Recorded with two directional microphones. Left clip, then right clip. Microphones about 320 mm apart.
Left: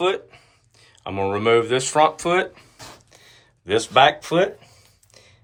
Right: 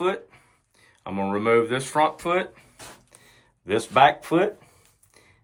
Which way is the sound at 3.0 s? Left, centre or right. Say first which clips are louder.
Left 5 dB; centre.